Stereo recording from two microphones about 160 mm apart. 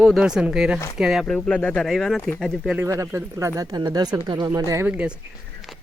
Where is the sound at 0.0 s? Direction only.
5° right (ahead or behind).